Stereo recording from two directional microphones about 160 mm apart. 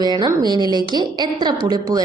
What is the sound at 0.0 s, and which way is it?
A woman's voice, 25° right (ahead or behind).